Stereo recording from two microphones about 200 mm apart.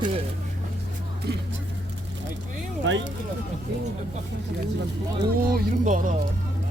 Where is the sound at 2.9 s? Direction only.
65° right (ahead or behind).